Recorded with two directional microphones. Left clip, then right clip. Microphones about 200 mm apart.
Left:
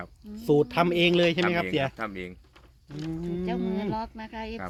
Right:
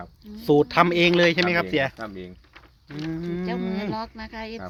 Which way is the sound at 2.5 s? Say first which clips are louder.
Right 5 dB; 10° right (ahead or behind).